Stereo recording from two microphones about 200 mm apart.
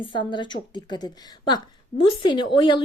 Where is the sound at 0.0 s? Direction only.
25° left (ahead or behind).